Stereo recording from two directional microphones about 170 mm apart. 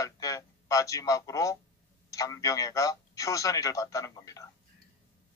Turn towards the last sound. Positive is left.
turn(degrees=20)  # may be behind; listen again after turning